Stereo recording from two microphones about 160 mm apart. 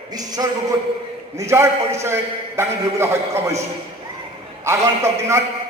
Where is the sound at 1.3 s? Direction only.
15° right (ahead or behind).